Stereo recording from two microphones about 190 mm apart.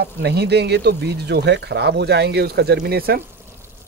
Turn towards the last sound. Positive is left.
turn(degrees=-55)  # may be behind; listen again after turning